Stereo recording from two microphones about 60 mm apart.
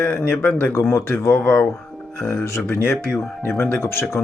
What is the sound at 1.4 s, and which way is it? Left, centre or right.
Speech, left.